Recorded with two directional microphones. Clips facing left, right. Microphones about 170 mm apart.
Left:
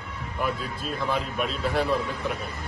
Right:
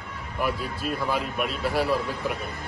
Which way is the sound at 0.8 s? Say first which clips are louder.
Right 1 dB; centre (ahead or behind).